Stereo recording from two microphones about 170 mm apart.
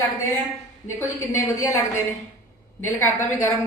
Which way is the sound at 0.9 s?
15° left (ahead or behind).